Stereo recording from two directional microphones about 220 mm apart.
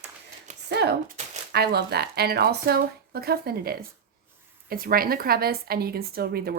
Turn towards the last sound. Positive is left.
turn(degrees=-45)  # may be behind; listen again after turning